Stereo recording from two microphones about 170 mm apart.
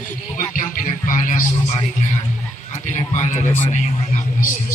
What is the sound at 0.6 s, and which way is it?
Speech, 50° left (ahead or behind).